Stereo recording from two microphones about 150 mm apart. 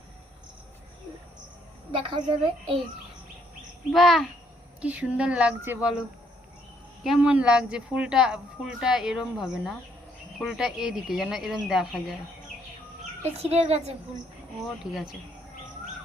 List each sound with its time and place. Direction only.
1.9 s a woman's voice: 35° right (ahead or behind)
3.9 s a woman's voice: centre (ahead or behind)
7.0 s a woman's voice: 5° right (ahead or behind)
13.4 s a woman's voice: 45° right (ahead or behind)
14.8 s speech: 25° left (ahead or behind)